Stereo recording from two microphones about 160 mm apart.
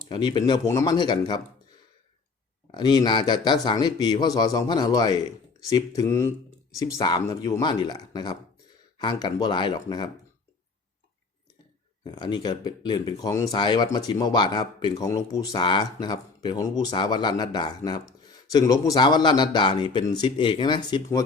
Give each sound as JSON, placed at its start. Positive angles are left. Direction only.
{"t": 0.1, "sound": "speech", "side_deg": 30}
{"t": 2.7, "sound": "speech", "side_deg": 25}
{"t": 12.0, "sound": "speech", "side_deg": 25}